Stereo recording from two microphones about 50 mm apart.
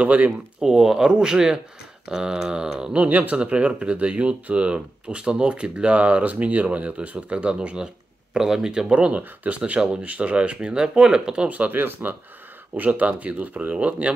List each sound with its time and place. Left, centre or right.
0.0 s speech: right
0.6 s speech: centre
11.4 s speech: right
11.8 s speech: right